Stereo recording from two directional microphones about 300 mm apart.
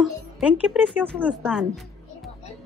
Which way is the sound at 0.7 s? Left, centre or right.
Centre.